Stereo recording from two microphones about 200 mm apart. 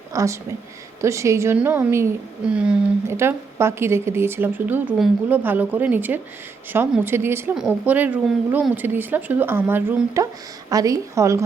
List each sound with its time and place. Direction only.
0.1 s a woman's voice: 15° right (ahead or behind)